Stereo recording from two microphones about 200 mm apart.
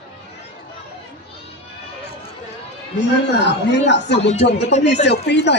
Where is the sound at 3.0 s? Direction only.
60° left (ahead or behind).